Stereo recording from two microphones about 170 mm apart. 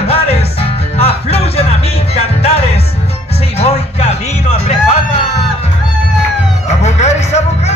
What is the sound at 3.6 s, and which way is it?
Music, 40° left (ahead or behind).